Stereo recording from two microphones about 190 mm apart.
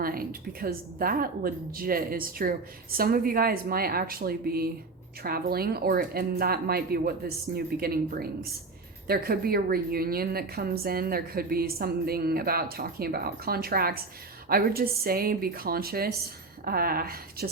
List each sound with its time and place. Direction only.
0.0 s a woman's voice: 50° right (ahead or behind)